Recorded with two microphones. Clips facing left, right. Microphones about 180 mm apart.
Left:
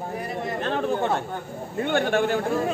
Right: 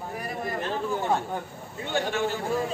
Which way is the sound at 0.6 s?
65° left (ahead or behind).